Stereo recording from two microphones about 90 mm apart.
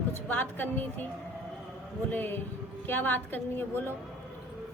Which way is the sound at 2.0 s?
20° left (ahead or behind).